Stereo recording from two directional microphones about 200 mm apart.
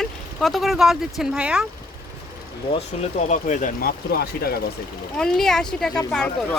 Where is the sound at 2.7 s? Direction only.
35° left (ahead or behind); by 4.5 s 50° left (ahead or behind).